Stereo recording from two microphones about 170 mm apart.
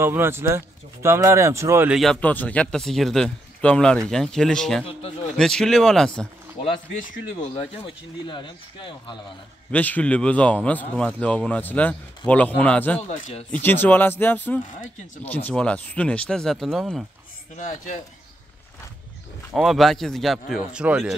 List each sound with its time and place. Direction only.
0.0 s speech: 15° right (ahead or behind)
2.0 s a man's voice: 5° left (ahead or behind)
7.5 s speech: 30° left (ahead or behind)
9.7 s a man's voice: 10° left (ahead or behind)
13.0 s speech: 45° left (ahead or behind)
13.5 s a man's voice: 10° left (ahead or behind)
19.5 s a man's voice: centre (ahead or behind)